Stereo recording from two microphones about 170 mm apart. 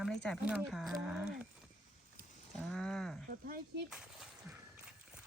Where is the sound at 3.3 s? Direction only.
55° right (ahead or behind).